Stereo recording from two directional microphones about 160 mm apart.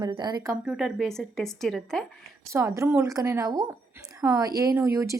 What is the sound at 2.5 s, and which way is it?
A woman's voice, 20° right (ahead or behind).